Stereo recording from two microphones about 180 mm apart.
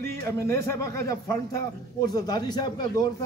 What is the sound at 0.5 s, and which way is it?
A man's voice, 15° left (ahead or behind).